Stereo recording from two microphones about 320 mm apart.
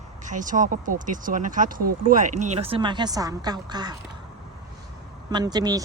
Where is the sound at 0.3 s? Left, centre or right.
Right.